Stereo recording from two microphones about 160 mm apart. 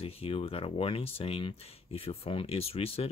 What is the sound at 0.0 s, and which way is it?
Speech, 35° left (ahead or behind).